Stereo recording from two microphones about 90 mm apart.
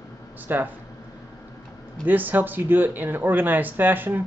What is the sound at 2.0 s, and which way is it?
A man's voice, 20° right (ahead or behind).